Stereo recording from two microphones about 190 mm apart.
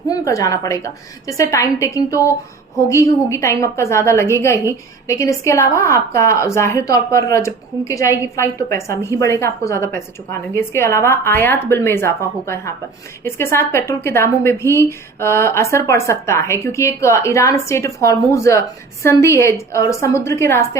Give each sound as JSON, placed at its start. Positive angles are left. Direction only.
{"t": 0.1, "sound": "a woman's voice", "side_deg": 20}